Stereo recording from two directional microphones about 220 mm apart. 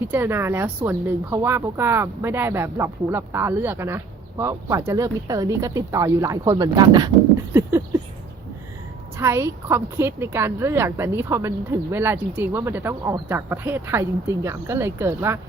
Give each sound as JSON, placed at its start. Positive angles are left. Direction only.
{"t": 0.0, "sound": "speech", "side_deg": -10}
{"t": 9.1, "sound": "speech", "side_deg": -10}